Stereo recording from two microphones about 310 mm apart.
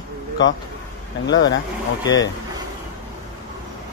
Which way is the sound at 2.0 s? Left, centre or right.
Centre.